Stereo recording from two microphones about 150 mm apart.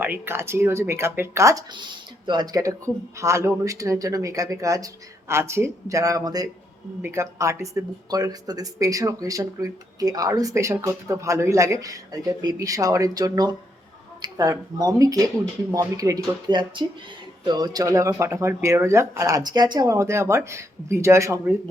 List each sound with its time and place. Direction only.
0.0 s speech: 15° right (ahead or behind)